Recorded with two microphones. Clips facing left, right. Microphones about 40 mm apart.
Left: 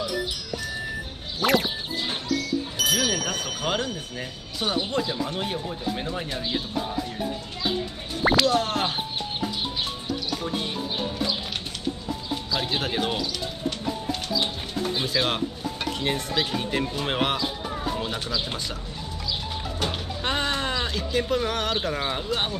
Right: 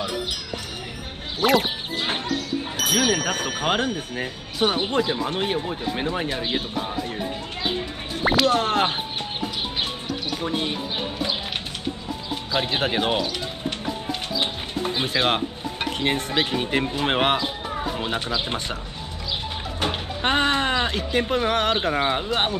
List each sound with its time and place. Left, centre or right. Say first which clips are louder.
1.6 s speech: right 2 dB; right
8.2 s music: even; centre
8.5 s speech: right 3 dB; right
10.3 s speech: right 6 dB; right
12.5 s speech: right 4 dB; right
13.8 s music: even; right
17.9 s speech: right 3 dB; right
19.8 s speech: right 5 dB; right